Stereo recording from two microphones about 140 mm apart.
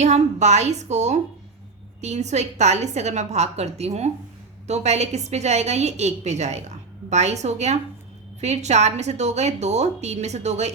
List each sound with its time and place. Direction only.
0.0 s a woman's voice: 55° right (ahead or behind)